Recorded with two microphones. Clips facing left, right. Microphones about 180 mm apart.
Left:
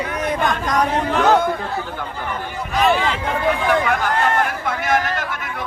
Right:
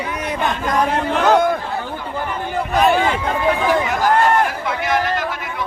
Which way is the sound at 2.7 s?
50° right (ahead or behind).